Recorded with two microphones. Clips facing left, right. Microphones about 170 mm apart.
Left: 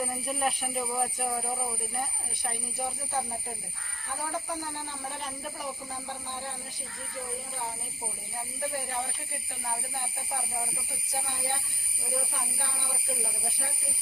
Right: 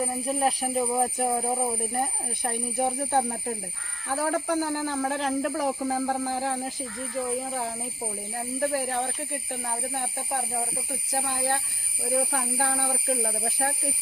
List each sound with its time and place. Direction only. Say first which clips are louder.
0.0 s a man's voice: right 5 dB; 35° right (ahead or behind); by 7.7 s 90° right
8.7 s speech: right 7 dB; 75° right (ahead or behind)
11.1 s a man's voice: right 6 dB; 90° right